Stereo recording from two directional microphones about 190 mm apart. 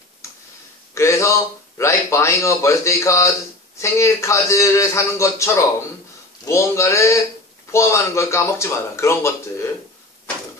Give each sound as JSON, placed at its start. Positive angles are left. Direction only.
{"t": 0.9, "sound": "speech", "side_deg": 15}